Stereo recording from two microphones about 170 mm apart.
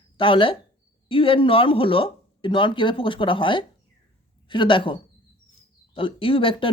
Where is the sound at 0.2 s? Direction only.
30° left (ahead or behind).